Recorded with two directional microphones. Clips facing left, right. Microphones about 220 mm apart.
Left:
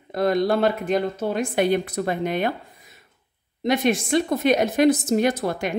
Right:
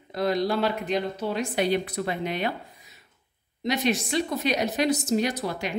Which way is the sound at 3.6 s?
50° left (ahead or behind).